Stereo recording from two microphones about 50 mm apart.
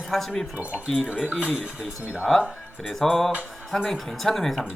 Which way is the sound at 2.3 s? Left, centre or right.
Centre.